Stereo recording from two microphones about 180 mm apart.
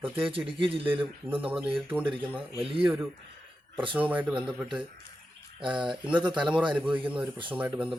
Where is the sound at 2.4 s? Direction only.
30° right (ahead or behind).